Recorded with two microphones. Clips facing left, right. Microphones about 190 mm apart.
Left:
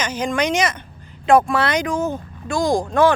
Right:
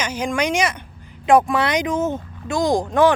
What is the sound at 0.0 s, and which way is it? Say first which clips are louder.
Speech: left 1 dB; 10° right (ahead or behind).